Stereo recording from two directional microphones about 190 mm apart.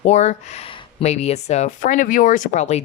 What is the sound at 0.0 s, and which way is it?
Speech, 35° left (ahead or behind).